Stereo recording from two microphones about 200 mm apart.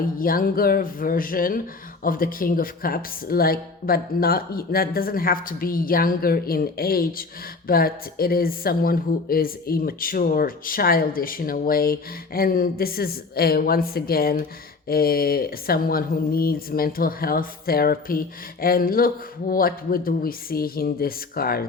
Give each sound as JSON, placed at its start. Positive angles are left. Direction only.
{"t": 0.2, "sound": "speech", "side_deg": 45}